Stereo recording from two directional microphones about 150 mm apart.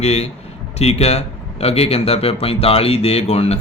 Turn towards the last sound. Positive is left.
turn(degrees=45)  # may be behind; listen again after turning